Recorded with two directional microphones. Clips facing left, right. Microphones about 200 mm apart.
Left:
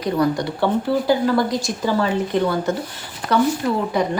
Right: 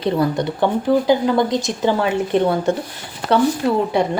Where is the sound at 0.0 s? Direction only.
25° right (ahead or behind).